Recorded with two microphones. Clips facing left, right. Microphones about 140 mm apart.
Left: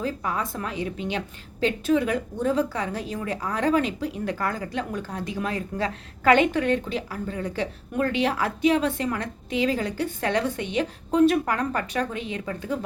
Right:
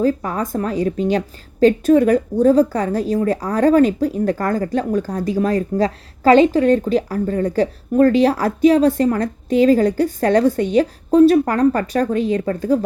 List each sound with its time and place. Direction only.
0.0 s speech: 40° right (ahead or behind)